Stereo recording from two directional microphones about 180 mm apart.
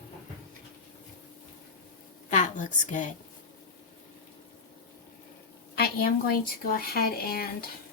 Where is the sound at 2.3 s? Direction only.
45° left (ahead or behind).